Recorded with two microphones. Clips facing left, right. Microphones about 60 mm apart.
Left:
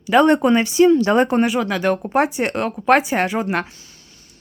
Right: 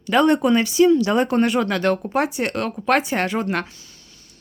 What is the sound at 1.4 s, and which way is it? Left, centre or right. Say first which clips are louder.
Speech: even; centre.